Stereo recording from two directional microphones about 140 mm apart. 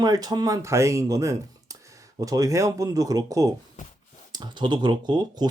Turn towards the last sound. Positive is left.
turn(degrees=-30)  # may be behind; listen again after turning